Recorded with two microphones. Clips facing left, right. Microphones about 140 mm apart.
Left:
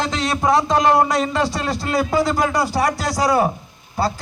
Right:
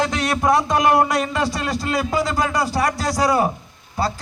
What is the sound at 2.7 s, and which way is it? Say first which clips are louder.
Speech: left 1 dB; 50° right (ahead or behind).